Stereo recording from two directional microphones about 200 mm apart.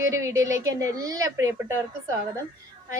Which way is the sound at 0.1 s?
15° right (ahead or behind).